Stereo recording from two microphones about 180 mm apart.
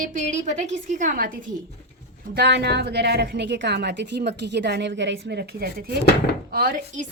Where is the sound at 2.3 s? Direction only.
65° right (ahead or behind); by 7.1 s 45° right (ahead or behind).